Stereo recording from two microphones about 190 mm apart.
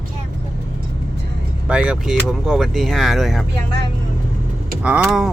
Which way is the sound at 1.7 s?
5° right (ahead or behind).